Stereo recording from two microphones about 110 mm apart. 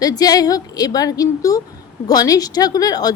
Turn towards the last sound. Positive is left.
turn(degrees=35)  # may be behind; listen again after turning